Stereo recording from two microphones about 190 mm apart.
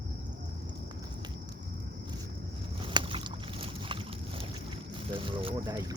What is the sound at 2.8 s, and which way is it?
Boat, 25° right (ahead or behind).